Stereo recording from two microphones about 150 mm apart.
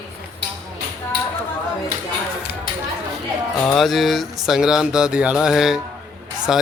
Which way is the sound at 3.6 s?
Centre (ahead or behind).